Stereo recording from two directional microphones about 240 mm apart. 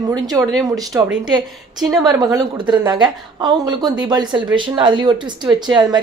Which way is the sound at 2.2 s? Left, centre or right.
Centre.